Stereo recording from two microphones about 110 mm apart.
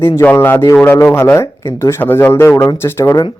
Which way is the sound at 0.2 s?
20° left (ahead or behind).